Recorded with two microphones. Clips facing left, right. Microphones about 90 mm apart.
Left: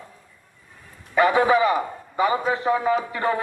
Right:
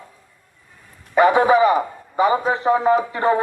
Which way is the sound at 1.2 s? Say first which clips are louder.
Right 4 dB; 20° right (ahead or behind).